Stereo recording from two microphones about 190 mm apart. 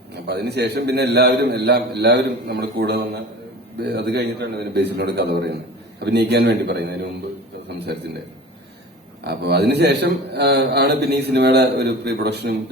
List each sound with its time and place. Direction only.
0.1 s a man's voice: 60° right (ahead or behind)
9.2 s a man's voice: 60° right (ahead or behind)